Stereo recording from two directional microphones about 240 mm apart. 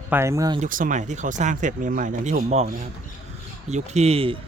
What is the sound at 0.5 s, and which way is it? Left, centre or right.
Speech, right.